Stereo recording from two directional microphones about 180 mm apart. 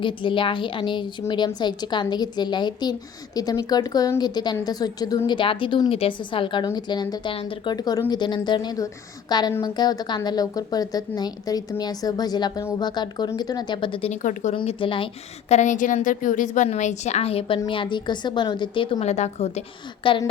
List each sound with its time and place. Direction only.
0.0 s a woman's voice: 25° left (ahead or behind); by 14.5 s 45° left (ahead or behind)
14.5 s a woman's voice: 30° left (ahead or behind)
20.1 s a woman's voice: 25° left (ahead or behind)